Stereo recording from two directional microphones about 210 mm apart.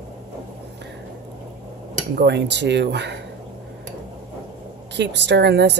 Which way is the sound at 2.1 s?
55° right (ahead or behind).